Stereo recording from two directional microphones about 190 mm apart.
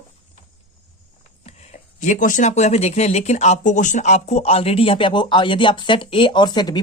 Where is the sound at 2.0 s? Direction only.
40° left (ahead or behind).